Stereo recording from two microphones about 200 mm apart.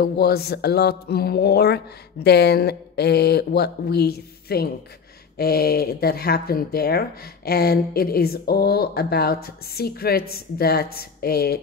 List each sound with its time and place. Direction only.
0.0 s speech: 50° left (ahead or behind)